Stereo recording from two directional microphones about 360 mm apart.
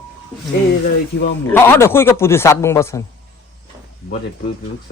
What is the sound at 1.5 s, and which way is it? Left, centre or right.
A man's voice, centre.